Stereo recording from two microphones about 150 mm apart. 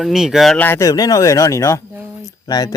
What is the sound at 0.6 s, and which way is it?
Speech, 20° left (ahead or behind).